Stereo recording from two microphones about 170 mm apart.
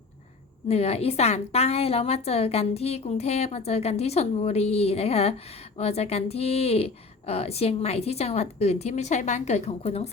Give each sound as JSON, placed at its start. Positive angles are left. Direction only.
{"t": 0.7, "sound": "a woman's voice", "side_deg": 35}